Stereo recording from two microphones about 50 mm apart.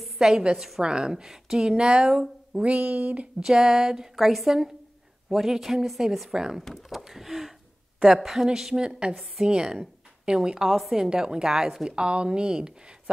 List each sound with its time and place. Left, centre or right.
0.0 s a sound: centre
0.7 s a woman's voice: centre
2.6 s speech: right
3.3 s a woman's voice: centre
6.6 s speech: centre
7.1 s a sound: centre
8.0 s a woman's voice: centre
9.5 s a woman's voice: centre
10.7 s a woman's voice: centre
11.1 s a woman's voice: centre
11.9 s speech: centre